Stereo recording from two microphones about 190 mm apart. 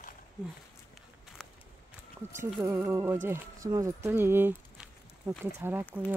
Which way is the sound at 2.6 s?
15° right (ahead or behind).